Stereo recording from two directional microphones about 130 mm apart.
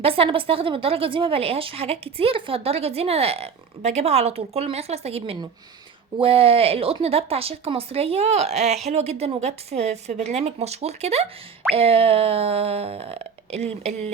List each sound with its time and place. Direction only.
0.0 s a woman's voice: 45° right (ahead or behind)